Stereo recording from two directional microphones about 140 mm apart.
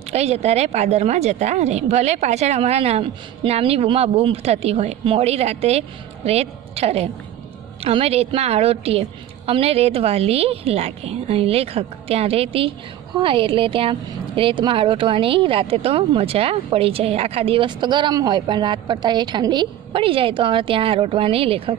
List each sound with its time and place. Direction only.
0.1 s a woman's voice: 50° right (ahead or behind)